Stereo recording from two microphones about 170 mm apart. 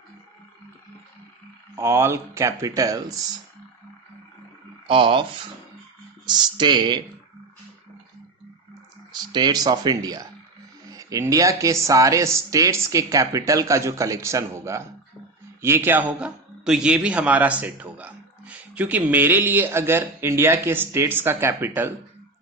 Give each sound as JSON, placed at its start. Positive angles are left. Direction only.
{"t": 1.7, "sound": "a man's voice", "side_deg": -15}
{"t": 4.9, "sound": "speech", "side_deg": -30}
{"t": 6.2, "sound": "speech", "side_deg": -25}
{"t": 9.3, "sound": "a man's voice", "side_deg": -25}